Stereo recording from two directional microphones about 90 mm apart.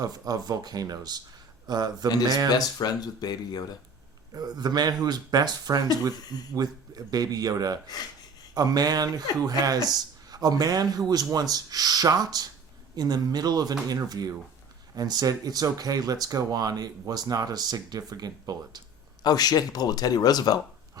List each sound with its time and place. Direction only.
0.0 s speech: 45° right (ahead or behind)
2.5 s speech: 50° left (ahead or behind)
4.4 s speech: 45° right (ahead or behind)
19.2 s speech: 45° left (ahead or behind)